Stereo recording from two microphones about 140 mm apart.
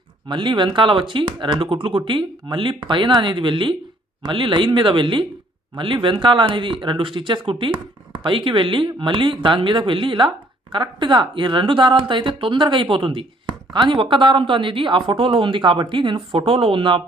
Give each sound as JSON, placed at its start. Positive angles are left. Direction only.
{"t": 0.3, "sound": "speech", "side_deg": -35}